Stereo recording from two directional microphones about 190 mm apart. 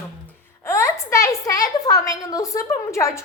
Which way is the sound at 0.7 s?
15° left (ahead or behind).